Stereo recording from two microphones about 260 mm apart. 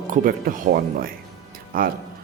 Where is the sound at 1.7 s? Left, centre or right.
Right.